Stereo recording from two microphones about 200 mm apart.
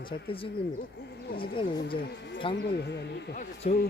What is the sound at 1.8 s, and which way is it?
Speech, 55° left (ahead or behind).